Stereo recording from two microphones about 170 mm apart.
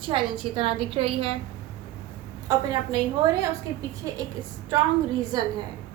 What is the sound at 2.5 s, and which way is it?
Speech, 20° right (ahead or behind).